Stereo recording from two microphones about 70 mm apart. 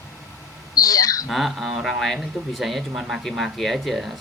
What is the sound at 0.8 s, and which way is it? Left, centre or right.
Speech, left.